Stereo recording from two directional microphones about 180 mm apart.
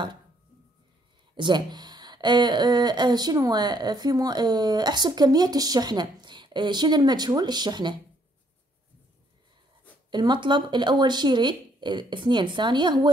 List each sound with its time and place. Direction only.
1.3 s speech: 25° right (ahead or behind)
10.1 s speech: 25° right (ahead or behind)